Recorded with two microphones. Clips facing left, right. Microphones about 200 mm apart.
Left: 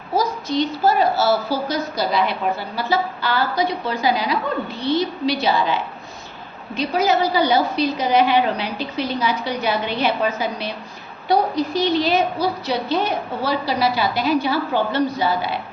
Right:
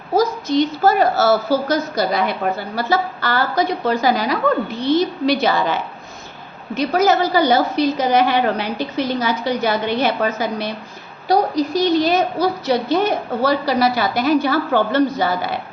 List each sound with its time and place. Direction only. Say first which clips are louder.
0.1 s a woman's voice: right 4 dB; 45° right (ahead or behind)
4.7 s a woman's voice: right 3 dB; 20° right (ahead or behind)
4.9 s a woman's voice: right 4 dB; 45° right (ahead or behind)